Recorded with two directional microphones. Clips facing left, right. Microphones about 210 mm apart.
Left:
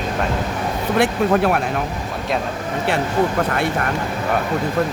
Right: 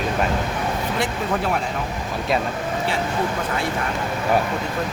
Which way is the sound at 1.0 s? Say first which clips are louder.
Left 9 dB; 65° left (ahead or behind).